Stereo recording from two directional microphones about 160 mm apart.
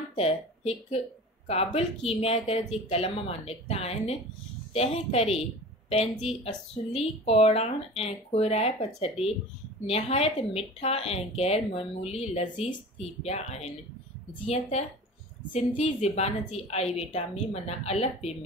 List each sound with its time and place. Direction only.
0.1 s a woman's voice: 40° left (ahead or behind)